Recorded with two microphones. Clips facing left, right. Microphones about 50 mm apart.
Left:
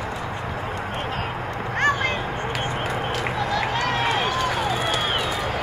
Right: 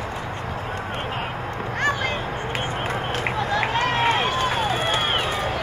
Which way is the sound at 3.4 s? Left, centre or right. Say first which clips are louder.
Right 2 dB; right.